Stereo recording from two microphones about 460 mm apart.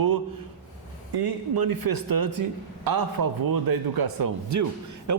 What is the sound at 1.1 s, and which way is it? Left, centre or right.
A man's voice, right.